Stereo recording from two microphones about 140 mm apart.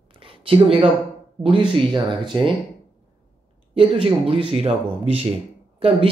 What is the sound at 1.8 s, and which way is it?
Speech, 35° right (ahead or behind).